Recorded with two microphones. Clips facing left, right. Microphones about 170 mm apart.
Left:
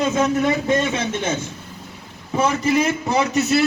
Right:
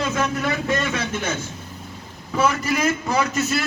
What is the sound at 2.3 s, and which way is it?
A man's voice, 25° left (ahead or behind).